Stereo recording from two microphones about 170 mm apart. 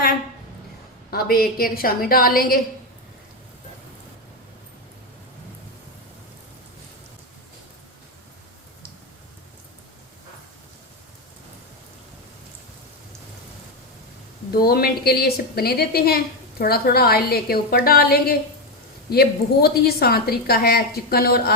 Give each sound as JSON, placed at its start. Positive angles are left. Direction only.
{"t": 1.1, "sound": "a woman's voice", "side_deg": 60}
{"t": 14.5, "sound": "a woman's voice", "side_deg": 65}